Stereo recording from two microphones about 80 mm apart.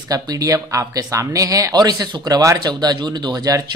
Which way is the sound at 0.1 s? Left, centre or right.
Right.